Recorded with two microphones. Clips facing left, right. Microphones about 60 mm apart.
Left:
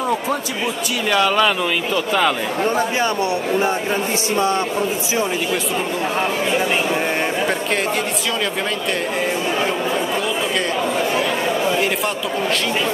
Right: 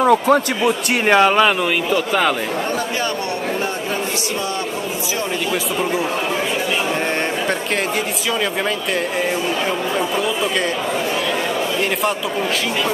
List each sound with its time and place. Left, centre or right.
0.0 s speech: right
1.0 s speech: right